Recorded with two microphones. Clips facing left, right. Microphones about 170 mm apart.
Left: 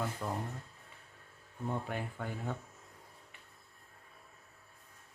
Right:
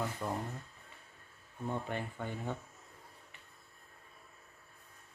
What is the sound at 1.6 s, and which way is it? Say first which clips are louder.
Speech: even; 5° left (ahead or behind).